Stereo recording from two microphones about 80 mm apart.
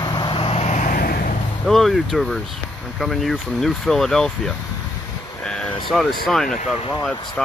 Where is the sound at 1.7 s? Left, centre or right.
Centre.